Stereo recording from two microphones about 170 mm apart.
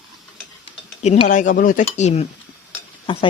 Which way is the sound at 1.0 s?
45° left (ahead or behind).